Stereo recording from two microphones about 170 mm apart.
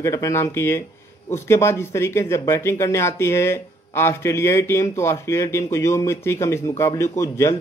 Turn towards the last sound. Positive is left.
turn(degrees=15)  # may be behind; listen again after turning